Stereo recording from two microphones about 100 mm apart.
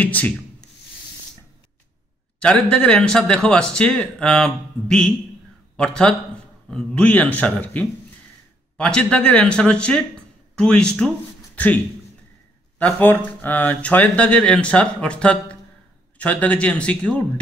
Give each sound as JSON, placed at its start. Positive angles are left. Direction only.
{"t": 0.0, "sound": "speech", "side_deg": 15}
{"t": 2.4, "sound": "speech", "side_deg": 10}